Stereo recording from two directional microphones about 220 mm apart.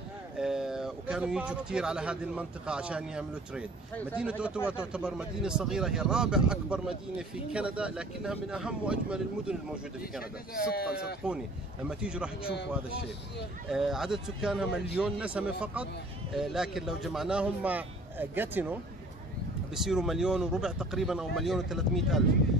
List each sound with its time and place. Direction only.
0.4 s speech: 5° right (ahead or behind)
10.5 s speech: 45° left (ahead or behind)
11.9 s speech: 5° right (ahead or behind)
13.7 s speech: centre (ahead or behind)